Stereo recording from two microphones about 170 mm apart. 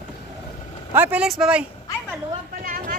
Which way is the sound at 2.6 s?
55° right (ahead or behind).